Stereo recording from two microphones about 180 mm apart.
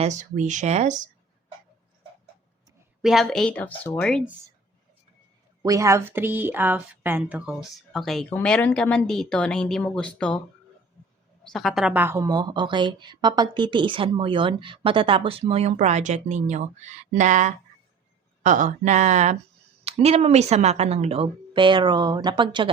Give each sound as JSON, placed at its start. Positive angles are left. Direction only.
{"t": 0.0, "sound": "speech", "side_deg": -40}
{"t": 3.0, "sound": "speech", "side_deg": 0}
{"t": 5.6, "sound": "speech", "side_deg": -15}
{"t": 11.4, "sound": "speech", "side_deg": 0}